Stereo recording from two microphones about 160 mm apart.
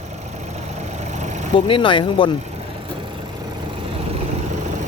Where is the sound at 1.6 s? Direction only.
30° left (ahead or behind).